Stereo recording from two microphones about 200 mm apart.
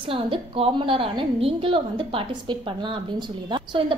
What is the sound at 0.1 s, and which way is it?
A woman's voice, 25° right (ahead or behind).